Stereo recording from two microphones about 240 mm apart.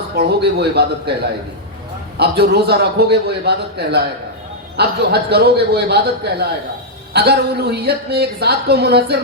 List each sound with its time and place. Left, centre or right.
0.2 s a woman's voice: right